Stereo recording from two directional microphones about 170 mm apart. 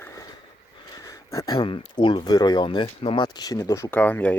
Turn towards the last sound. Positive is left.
turn(degrees=10)  # may be behind; listen again after turning